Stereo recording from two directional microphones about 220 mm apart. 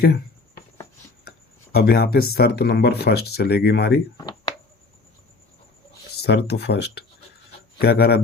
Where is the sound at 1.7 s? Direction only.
45° left (ahead or behind).